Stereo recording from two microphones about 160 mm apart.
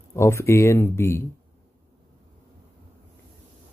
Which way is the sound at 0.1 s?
15° left (ahead or behind).